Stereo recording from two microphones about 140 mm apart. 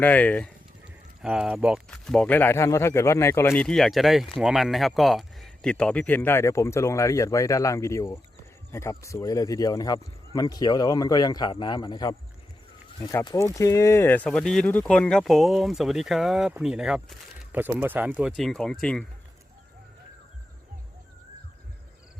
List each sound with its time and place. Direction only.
0.0 s speech: 10° left (ahead or behind)
1.2 s speech: 5° right (ahead or behind); by 3.6 s 20° left (ahead or behind)
3.6 s speech: 5° left (ahead or behind); by 12.1 s 30° left (ahead or behind)
13.2 s speech: 25° left (ahead or behind); by 19.0 s 5° left (ahead or behind)